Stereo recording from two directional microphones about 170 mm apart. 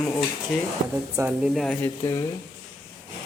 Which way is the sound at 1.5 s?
Centre (ahead or behind).